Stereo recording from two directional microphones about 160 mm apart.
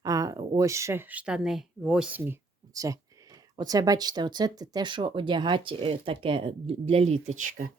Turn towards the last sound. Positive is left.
turn(degrees=-40)  # may be behind; listen again after turning